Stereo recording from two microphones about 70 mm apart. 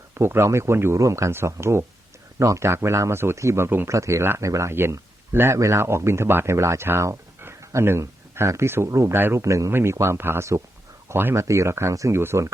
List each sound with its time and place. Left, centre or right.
0.1 s speech: right
3.9 s speech: right
4.7 s speech: right
9.1 s speech: right
9.4 s speech: right